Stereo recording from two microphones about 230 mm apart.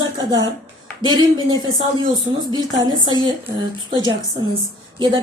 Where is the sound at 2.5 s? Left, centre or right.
Right.